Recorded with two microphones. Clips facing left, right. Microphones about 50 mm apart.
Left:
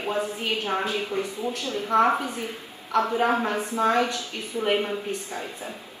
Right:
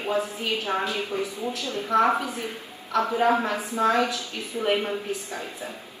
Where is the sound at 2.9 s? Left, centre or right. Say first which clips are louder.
Right 1 dB; left.